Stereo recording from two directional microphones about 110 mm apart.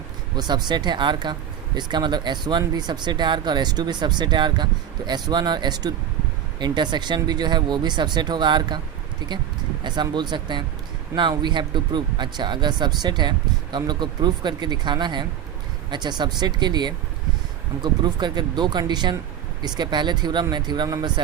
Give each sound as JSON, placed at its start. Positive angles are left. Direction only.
{"t": 0.3, "sound": "speech", "side_deg": -40}